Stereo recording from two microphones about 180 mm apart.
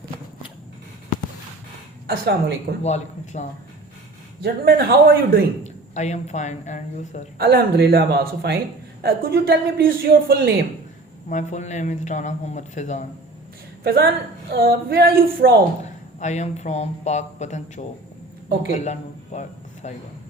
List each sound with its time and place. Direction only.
2.0 s a man's voice: 60° right (ahead or behind)
2.8 s a man's voice: 40° left (ahead or behind)
4.4 s a man's voice: 60° right (ahead or behind)
5.6 s a man's voice: 40° left (ahead or behind)
7.3 s a man's voice: 60° right (ahead or behind)
11.3 s a man's voice: 40° left (ahead or behind)
13.8 s a man's voice: 60° right (ahead or behind)
15.8 s a man's voice: 40° left (ahead or behind)